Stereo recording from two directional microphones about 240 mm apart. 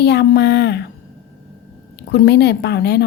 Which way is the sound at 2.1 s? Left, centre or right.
Left.